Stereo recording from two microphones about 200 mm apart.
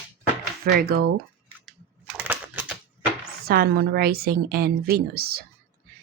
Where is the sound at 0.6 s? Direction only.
50° right (ahead or behind).